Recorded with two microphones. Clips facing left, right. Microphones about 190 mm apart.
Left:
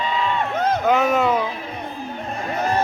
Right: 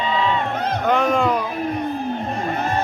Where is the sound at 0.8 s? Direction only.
5° left (ahead or behind).